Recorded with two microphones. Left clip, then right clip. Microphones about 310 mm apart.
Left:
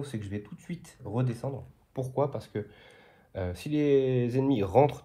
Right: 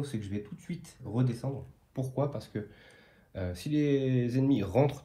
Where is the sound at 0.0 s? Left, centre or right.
Left.